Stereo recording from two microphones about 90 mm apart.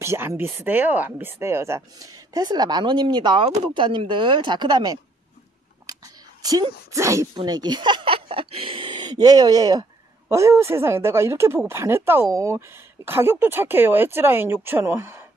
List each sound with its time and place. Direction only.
0.0 s a woman's voice: 30° right (ahead or behind); by 5.0 s 55° right (ahead or behind)
6.9 s speech: 35° right (ahead or behind)
7.3 s speech: 50° right (ahead or behind)
10.3 s speech: 30° right (ahead or behind)